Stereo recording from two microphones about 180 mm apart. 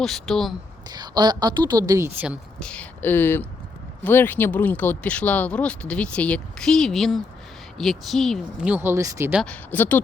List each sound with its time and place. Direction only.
0.0 s speech: centre (ahead or behind)
0.9 s a woman's voice: 25° right (ahead or behind)
2.6 s speech: 5° left (ahead or behind); by 9.4 s 15° right (ahead or behind)
9.4 s speech: 10° left (ahead or behind)